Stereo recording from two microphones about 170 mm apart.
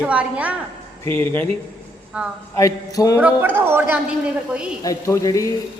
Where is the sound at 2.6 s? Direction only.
20° left (ahead or behind).